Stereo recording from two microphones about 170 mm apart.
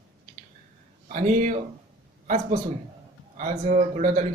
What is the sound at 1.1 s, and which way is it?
Speech, 50° right (ahead or behind).